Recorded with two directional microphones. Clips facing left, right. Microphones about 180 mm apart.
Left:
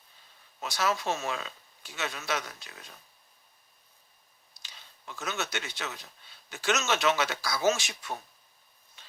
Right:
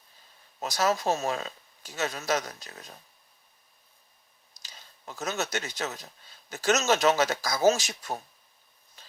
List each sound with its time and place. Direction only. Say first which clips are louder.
0.6 s speech: right 4 dB; 40° right (ahead or behind)
4.6 s speech: right 3 dB; 40° right (ahead or behind)